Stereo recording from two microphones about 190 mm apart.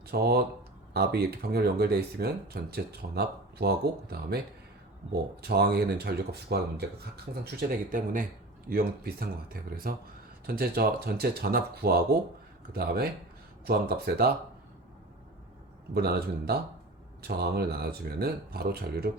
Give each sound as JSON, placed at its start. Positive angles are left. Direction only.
{"t": 0.1, "sound": "speech", "side_deg": -55}
{"t": 16.0, "sound": "speech", "side_deg": -55}